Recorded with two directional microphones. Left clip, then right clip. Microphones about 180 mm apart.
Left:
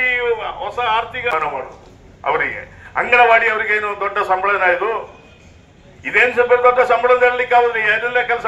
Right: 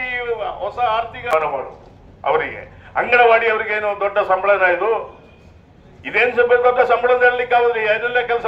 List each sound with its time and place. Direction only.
0.0 s a sound: 65° right (ahead or behind)
2.9 s a man's voice: 60° right (ahead or behind)
6.0 s a man's voice: 60° right (ahead or behind)